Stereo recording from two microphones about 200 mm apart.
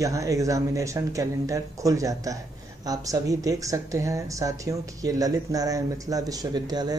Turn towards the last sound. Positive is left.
turn(degrees=-20)  # may be behind; listen again after turning